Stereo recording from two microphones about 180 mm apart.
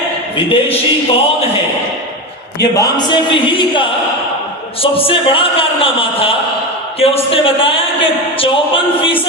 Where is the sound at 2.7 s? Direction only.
25° left (ahead or behind).